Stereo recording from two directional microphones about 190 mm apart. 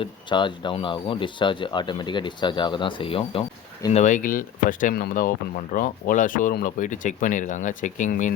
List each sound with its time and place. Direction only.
0.0 s speech: 25° left (ahead or behind)
3.9 s speech: 40° left (ahead or behind)